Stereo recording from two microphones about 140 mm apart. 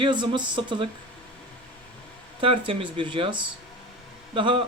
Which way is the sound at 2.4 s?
40° right (ahead or behind).